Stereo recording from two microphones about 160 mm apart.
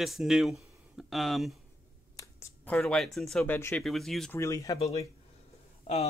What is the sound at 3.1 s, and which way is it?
Speech, 5° left (ahead or behind).